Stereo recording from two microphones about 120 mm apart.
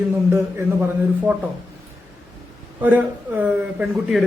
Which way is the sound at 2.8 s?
15° right (ahead or behind).